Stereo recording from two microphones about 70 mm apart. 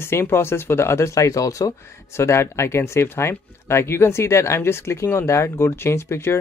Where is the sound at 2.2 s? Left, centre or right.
Left.